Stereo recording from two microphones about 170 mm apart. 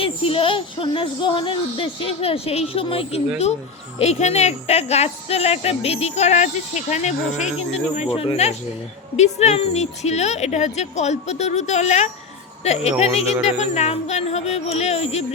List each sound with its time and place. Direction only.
0.0 s speech: 30° left (ahead or behind)